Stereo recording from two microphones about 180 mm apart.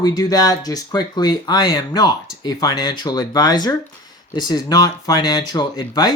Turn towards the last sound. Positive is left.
turn(degrees=25)  # may be behind; listen again after turning